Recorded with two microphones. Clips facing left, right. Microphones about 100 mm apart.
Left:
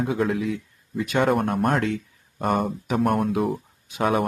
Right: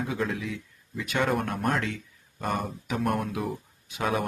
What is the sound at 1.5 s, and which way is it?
Speech, 50° left (ahead or behind).